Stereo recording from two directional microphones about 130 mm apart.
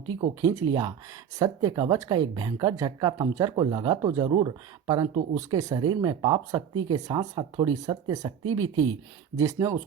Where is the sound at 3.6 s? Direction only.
40° right (ahead or behind).